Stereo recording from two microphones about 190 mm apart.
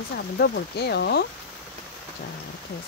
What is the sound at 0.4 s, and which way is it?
Speech, 60° left (ahead or behind).